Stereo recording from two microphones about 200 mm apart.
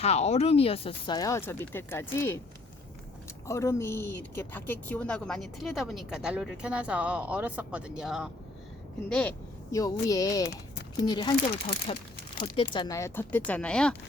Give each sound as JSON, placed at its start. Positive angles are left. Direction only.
{"t": 0.0, "sound": "speech", "side_deg": 30}
{"t": 3.4, "sound": "speech", "side_deg": 15}
{"t": 9.7, "sound": "speech", "side_deg": 15}